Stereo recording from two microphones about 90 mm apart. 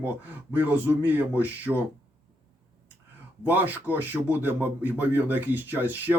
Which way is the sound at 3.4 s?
20° right (ahead or behind).